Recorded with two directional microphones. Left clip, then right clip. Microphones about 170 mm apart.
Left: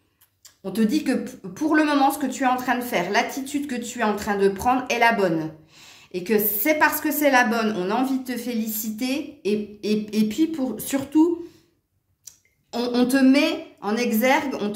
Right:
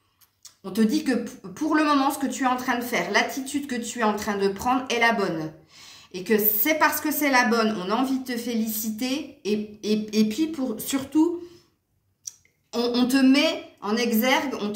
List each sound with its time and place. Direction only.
0.7 s speech: 35° left (ahead or behind)
12.7 s speech: 40° left (ahead or behind)